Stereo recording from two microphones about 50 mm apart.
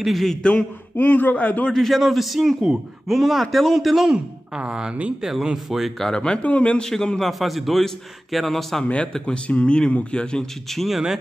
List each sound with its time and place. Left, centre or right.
0.0 s a man's voice: centre
0.4 s a man's voice: centre
0.9 s a man's voice: left
1.7 s a man's voice: centre
4.6 s speech: centre
5.9 s a man's voice: centre
6.8 s a man's voice: centre
7.2 s a man's voice: centre
8.8 s a man's voice: left
10.7 s a man's voice: centre